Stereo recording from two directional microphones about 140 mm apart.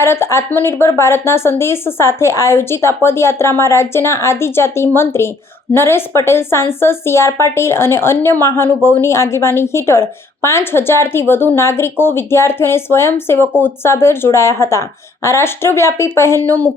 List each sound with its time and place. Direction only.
0.0 s a woman's voice: 20° left (ahead or behind)